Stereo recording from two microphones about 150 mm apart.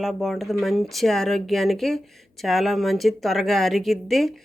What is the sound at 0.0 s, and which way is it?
Speech, centre (ahead or behind).